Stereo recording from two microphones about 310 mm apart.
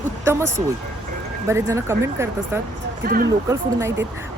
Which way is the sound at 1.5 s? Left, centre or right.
Centre.